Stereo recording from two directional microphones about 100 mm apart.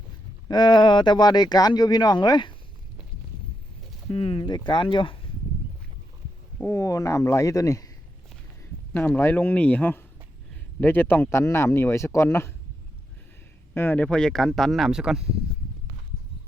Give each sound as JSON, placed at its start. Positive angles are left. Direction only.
{"t": 0.4, "sound": "speech", "side_deg": 45}
{"t": 4.1, "sound": "speech", "side_deg": 60}
{"t": 6.6, "sound": "speech", "side_deg": 30}
{"t": 8.9, "sound": "speech", "side_deg": 15}
{"t": 13.7, "sound": "speech", "side_deg": 20}